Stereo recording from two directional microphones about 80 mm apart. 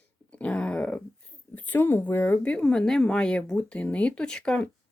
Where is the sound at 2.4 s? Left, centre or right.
Centre.